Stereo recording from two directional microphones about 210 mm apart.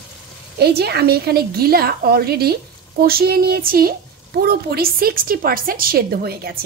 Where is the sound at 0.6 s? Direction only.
50° right (ahead or behind).